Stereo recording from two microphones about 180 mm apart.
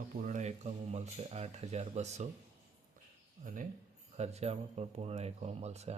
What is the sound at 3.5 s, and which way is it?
Speech, 50° right (ahead or behind).